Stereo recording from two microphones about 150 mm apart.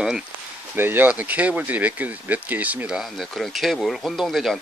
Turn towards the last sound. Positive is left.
turn(degrees=0)  # may be behind; listen again after turning